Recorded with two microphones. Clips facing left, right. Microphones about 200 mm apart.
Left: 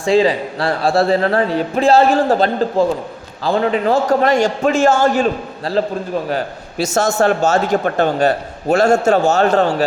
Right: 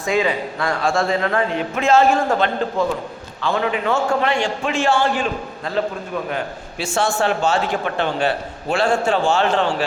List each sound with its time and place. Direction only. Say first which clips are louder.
0.0 s a man's voice: left 6 dB; 30° left (ahead or behind)